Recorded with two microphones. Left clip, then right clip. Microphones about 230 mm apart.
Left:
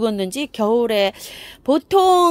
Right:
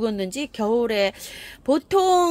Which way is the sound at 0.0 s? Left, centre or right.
Left.